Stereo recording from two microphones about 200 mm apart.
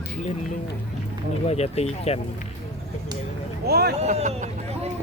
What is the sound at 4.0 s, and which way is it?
Speech, 35° right (ahead or behind).